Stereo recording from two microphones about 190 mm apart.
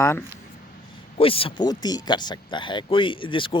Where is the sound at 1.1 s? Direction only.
30° left (ahead or behind).